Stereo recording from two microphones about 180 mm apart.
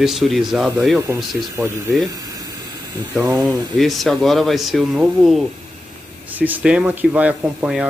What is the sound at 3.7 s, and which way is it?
Speech, centre (ahead or behind).